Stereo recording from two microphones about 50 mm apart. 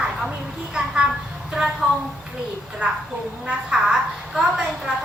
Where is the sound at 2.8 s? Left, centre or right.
Right.